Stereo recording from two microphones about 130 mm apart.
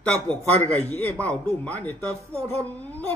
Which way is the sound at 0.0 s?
10° left (ahead or behind).